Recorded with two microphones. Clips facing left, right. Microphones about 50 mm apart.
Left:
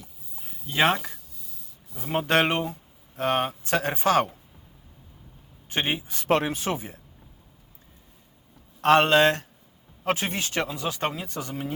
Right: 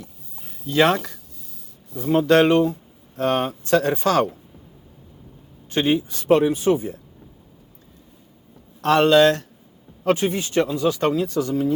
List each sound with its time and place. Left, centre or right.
0.3 s a sound: centre
0.7 s speech: left
2.0 s speech: left
5.6 s a man's voice: left
6.2 s speech: left
8.8 s speech: left
10.2 s speech: left
10.8 s speech: left